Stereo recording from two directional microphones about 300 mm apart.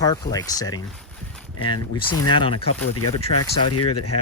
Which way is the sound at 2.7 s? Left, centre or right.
Left.